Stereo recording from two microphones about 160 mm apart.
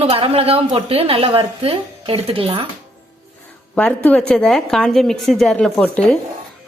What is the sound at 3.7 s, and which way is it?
A woman's voice, 10° left (ahead or behind).